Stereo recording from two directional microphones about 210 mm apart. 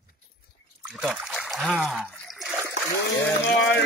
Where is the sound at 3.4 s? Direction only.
55° left (ahead or behind).